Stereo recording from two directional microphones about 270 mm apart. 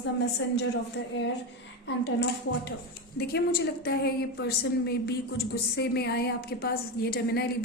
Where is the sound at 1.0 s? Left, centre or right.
Left.